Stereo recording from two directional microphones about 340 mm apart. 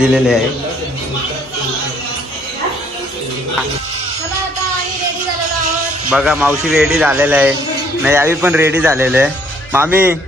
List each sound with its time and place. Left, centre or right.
0.0 s speech: centre
6.0 s speech: centre